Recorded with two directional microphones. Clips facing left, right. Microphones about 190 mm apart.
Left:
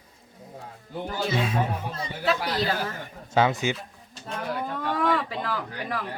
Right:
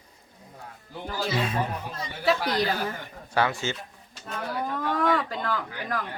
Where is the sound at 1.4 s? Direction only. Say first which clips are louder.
Left 1 dB; centre (ahead or behind).